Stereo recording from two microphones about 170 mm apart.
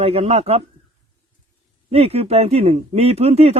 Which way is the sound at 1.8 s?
35° right (ahead or behind).